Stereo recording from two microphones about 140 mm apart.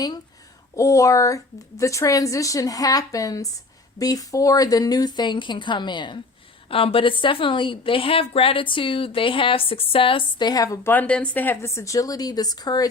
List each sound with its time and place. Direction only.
0.8 s a woman's voice: 25° left (ahead or behind)
10.9 s a woman's voice: 10° left (ahead or behind); by 12.9 s 30° left (ahead or behind)